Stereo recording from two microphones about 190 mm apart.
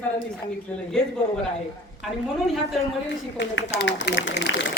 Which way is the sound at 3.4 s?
70° left (ahead or behind).